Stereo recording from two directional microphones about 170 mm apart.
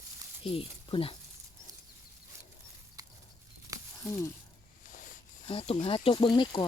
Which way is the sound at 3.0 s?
20° right (ahead or behind).